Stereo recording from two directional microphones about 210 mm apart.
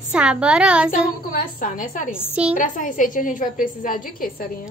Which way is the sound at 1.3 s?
40° left (ahead or behind).